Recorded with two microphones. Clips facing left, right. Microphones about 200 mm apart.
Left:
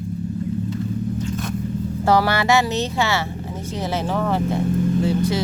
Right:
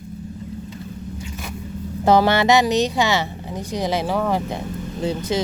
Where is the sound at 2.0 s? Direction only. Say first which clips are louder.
Right 3 dB; 20° right (ahead or behind).